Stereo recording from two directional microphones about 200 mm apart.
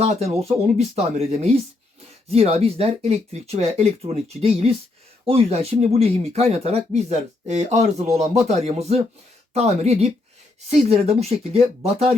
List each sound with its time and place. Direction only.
0.0 s speech: 30° right (ahead or behind)